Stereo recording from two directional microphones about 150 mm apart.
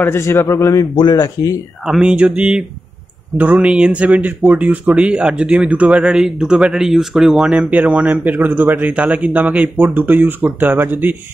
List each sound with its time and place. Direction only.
0.0 s a man's voice: 15° left (ahead or behind)
1.9 s speech: 5° right (ahead or behind)